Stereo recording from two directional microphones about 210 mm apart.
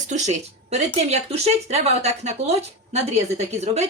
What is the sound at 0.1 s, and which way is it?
Speech, 35° right (ahead or behind).